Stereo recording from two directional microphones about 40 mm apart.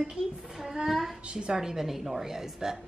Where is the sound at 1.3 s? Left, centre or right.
Right.